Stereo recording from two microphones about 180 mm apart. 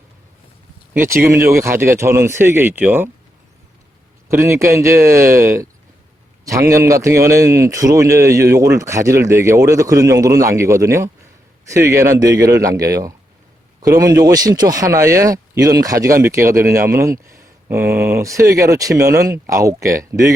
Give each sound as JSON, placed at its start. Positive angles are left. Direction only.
{"t": 0.9, "sound": "a man's voice", "side_deg": -15}
{"t": 4.3, "sound": "a man's voice", "side_deg": -15}